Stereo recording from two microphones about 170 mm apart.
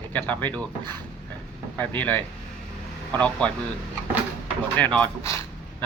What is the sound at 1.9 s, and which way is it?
A man's voice, 10° left (ahead or behind).